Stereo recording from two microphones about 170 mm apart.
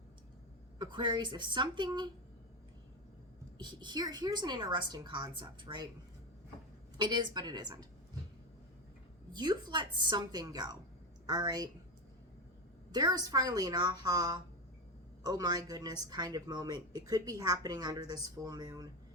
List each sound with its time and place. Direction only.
0.8 s speech: 25° right (ahead or behind)
3.6 s speech: 25° right (ahead or behind)
7.0 s speech: 25° right (ahead or behind)
9.3 s speech: 25° right (ahead or behind)
12.9 s speech: 25° right (ahead or behind)